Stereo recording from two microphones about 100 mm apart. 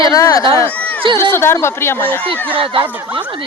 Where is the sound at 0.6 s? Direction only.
15° left (ahead or behind).